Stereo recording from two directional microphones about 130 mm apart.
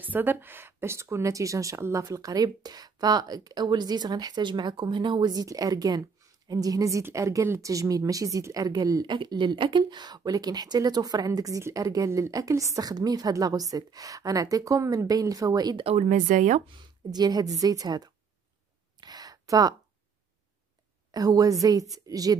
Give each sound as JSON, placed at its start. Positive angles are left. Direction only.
{"t": 0.0, "sound": "a woman's voice", "side_deg": -15}
{"t": 15.8, "sound": "speech", "side_deg": -55}
{"t": 16.7, "sound": "a woman's voice", "side_deg": -30}
{"t": 18.9, "sound": "a sound", "side_deg": -30}
{"t": 21.1, "sound": "a woman's voice", "side_deg": -30}